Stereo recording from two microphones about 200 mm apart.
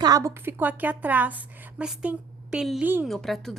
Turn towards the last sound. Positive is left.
turn(degrees=0)  # may be behind; listen again after turning